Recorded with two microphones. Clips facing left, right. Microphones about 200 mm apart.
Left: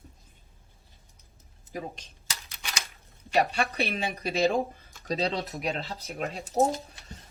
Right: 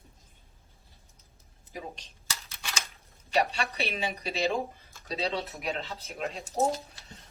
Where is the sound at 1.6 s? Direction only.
45° left (ahead or behind).